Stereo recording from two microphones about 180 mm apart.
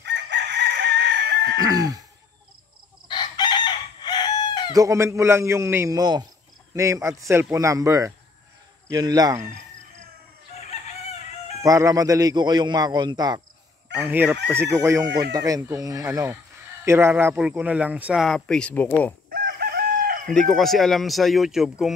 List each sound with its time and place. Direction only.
0.0 s chicken: 70° right (ahead or behind)
1.6 s a man's voice: 20° right (ahead or behind)
3.1 s chicken: 25° left (ahead or behind)
4.7 s a man's voice: 15° right (ahead or behind)
10.6 s chicken: 40° left (ahead or behind)
11.6 s a man's voice: 20° right (ahead or behind)
13.9 s a man's voice: 10° right (ahead or behind); by 19.1 s 10° left (ahead or behind)
19.3 s chicken: 60° right (ahead or behind)
20.4 s speech: centre (ahead or behind)